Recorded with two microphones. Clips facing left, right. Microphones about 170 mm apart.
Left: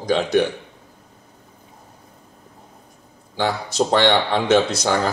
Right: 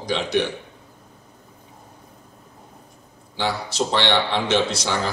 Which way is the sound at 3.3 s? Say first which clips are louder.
Left 3 dB; 45° left (ahead or behind).